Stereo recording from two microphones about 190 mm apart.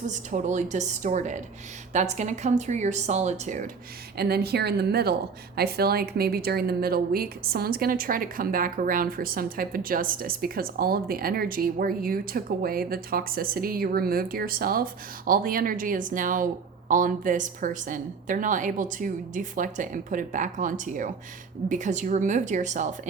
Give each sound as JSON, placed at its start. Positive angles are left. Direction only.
{"t": 0.1, "sound": "speech", "side_deg": -40}
{"t": 4.2, "sound": "speech", "side_deg": -55}